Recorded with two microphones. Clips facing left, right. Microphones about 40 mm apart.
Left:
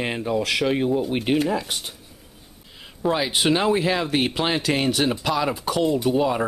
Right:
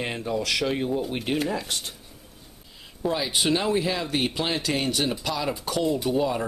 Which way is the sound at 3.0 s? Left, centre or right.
Left.